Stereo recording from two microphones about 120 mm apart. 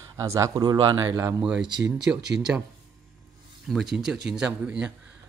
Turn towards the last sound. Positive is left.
turn(degrees=-10)  # may be behind; listen again after turning